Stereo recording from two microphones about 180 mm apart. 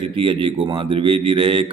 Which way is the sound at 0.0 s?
30° right (ahead or behind).